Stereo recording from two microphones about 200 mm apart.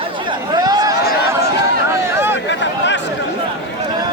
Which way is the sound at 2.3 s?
60° left (ahead or behind).